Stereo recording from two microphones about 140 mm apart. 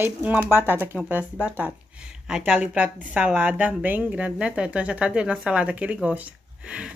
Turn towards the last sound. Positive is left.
turn(degrees=-10)  # may be behind; listen again after turning